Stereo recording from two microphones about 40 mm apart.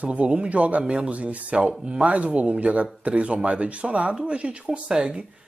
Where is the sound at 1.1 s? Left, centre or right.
Right.